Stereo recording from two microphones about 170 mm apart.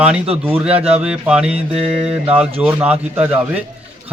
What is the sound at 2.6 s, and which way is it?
Speech, 10° right (ahead or behind).